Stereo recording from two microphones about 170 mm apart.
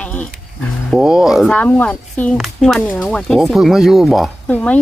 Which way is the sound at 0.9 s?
5° right (ahead or behind).